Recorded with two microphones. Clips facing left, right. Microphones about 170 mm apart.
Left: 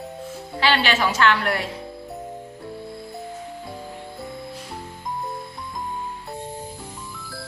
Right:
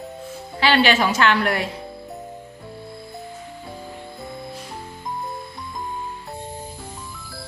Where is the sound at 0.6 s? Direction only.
15° right (ahead or behind).